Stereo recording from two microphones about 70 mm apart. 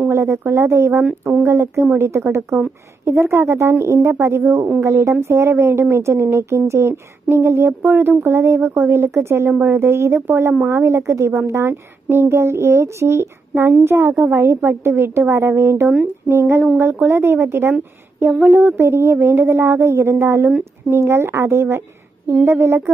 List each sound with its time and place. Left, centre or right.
0.1 s speech: right